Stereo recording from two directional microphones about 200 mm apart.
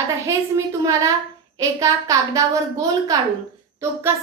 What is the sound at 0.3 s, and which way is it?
A woman's voice, 15° right (ahead or behind).